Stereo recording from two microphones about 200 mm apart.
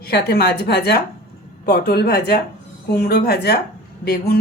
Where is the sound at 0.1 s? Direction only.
55° left (ahead or behind).